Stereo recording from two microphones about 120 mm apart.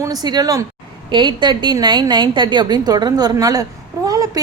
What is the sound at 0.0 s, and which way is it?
A woman's voice, 35° right (ahead or behind).